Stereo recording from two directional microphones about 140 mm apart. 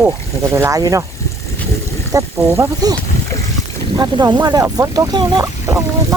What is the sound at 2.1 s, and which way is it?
Speech, 20° right (ahead or behind).